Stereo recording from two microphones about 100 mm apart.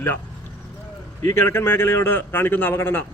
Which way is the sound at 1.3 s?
20° left (ahead or behind).